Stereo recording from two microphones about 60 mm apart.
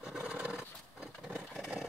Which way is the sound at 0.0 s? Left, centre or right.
Centre.